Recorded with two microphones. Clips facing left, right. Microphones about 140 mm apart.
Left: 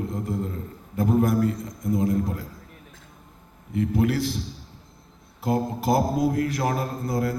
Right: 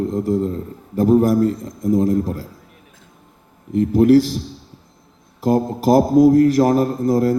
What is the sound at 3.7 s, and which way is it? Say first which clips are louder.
Speech: right 11 dB; 40° right (ahead or behind).